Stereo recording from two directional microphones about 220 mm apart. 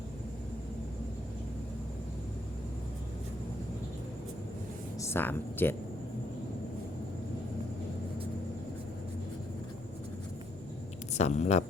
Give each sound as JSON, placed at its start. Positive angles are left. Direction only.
{"t": 4.9, "sound": "speech", "side_deg": 10}
{"t": 11.1, "sound": "speech", "side_deg": 30}